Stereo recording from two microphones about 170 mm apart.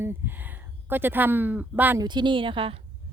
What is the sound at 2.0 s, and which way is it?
Speech, 25° right (ahead or behind).